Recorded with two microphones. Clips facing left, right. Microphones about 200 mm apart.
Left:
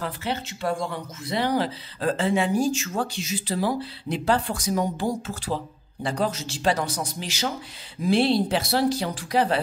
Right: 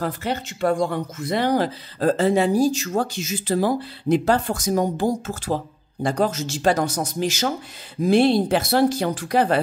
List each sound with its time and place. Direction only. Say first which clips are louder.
0.0 s speech: right 4 dB; 45° right (ahead or behind)